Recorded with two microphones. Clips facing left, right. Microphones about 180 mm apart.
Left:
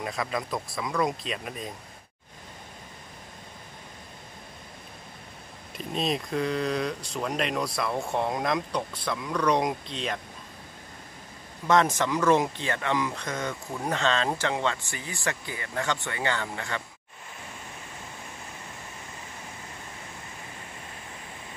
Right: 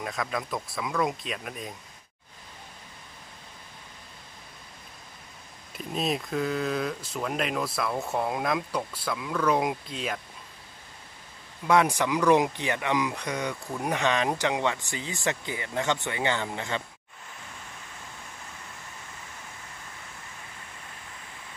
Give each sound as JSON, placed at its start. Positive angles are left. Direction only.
{"t": 0.0, "sound": "speech", "side_deg": 0}
{"t": 5.8, "sound": "speech", "side_deg": -5}
{"t": 11.6, "sound": "speech", "side_deg": -10}